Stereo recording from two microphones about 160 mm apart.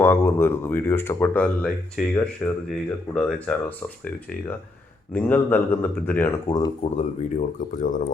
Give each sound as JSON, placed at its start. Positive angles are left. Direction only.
{"t": 0.0, "sound": "speech", "side_deg": 15}
{"t": 6.9, "sound": "speech", "side_deg": 50}